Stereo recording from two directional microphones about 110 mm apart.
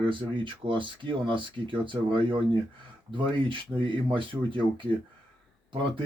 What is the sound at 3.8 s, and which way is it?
Speech, 50° right (ahead or behind).